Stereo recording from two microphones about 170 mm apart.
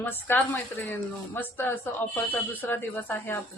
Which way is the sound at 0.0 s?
10° left (ahead or behind).